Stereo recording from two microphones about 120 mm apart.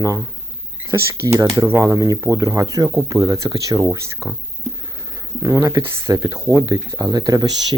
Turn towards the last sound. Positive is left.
turn(degrees=-35)  # may be behind; listen again after turning